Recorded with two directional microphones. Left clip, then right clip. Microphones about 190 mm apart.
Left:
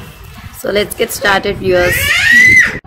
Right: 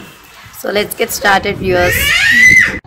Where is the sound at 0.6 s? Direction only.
10° right (ahead or behind).